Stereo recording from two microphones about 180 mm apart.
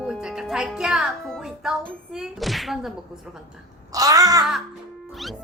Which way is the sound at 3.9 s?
20° right (ahead or behind).